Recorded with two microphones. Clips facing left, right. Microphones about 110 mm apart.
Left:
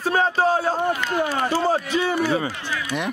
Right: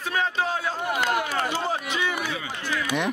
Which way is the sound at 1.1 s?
15° right (ahead or behind).